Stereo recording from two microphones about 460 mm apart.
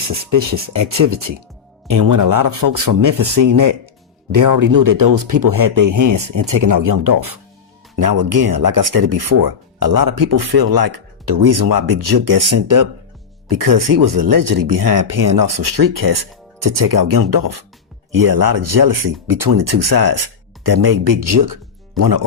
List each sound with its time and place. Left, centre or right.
0.7 s speech: right
11.9 s speech: right